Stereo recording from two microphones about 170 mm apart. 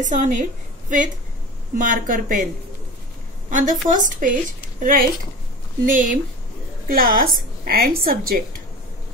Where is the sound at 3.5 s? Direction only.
50° right (ahead or behind).